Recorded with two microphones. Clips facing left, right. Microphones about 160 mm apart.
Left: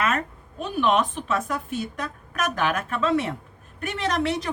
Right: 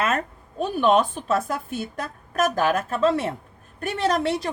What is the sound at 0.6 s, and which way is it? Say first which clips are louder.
Speech: right 3 dB; 40° right (ahead or behind).